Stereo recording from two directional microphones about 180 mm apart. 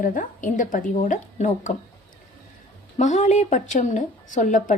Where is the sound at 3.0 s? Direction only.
40° left (ahead or behind).